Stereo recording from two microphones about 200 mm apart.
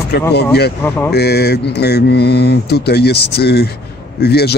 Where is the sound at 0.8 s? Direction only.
10° left (ahead or behind).